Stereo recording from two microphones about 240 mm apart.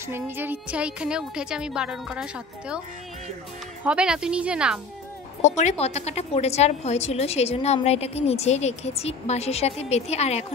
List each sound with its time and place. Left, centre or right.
0.0 s a woman's voice: centre
3.8 s a woman's voice: centre
5.6 s a woman's voice: left